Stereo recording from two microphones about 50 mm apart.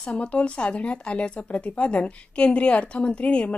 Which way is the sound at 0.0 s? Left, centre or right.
Left.